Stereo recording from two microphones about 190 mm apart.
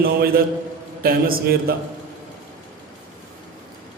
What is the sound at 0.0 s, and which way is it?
A man's voice, 50° right (ahead or behind).